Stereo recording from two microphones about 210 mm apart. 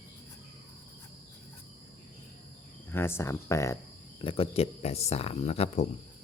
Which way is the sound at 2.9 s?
10° left (ahead or behind).